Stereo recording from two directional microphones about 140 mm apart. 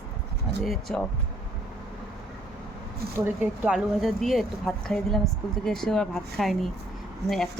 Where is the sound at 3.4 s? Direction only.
5° right (ahead or behind).